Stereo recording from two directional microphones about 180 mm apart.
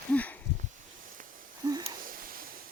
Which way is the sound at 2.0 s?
55° right (ahead or behind).